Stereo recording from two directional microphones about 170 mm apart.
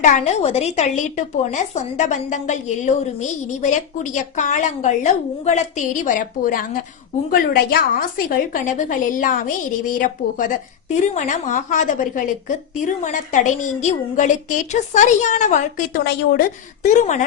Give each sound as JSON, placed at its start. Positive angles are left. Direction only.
{"t": 0.0, "sound": "a woman's voice", "side_deg": 45}
{"t": 16.0, "sound": "a woman's voice", "side_deg": 80}
{"t": 16.8, "sound": "a woman's voice", "side_deg": 45}